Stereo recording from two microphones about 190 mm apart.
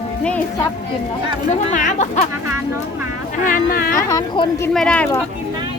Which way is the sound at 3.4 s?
45° left (ahead or behind).